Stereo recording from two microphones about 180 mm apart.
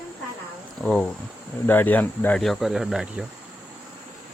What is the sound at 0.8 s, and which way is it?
Speech, 5° left (ahead or behind).